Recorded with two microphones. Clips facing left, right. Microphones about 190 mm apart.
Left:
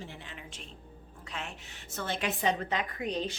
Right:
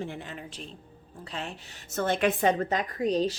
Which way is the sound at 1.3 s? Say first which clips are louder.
Right 4 dB; 35° right (ahead or behind).